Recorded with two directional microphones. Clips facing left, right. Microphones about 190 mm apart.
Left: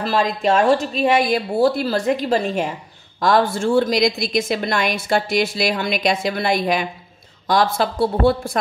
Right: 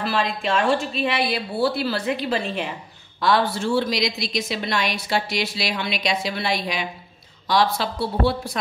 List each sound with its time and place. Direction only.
0.0 s a woman's voice: 40° left (ahead or behind)